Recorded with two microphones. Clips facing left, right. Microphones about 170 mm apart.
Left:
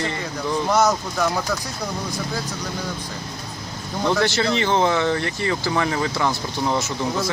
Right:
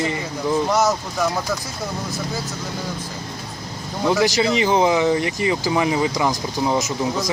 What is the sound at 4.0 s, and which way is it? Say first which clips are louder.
Speech: right 2 dB; 10° right (ahead or behind).